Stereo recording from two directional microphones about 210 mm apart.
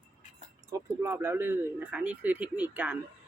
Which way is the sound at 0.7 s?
10° right (ahead or behind).